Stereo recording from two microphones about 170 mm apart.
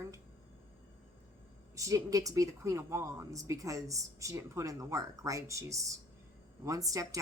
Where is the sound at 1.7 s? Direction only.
20° right (ahead or behind).